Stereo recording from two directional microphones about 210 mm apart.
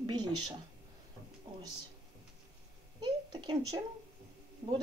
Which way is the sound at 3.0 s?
20° right (ahead or behind).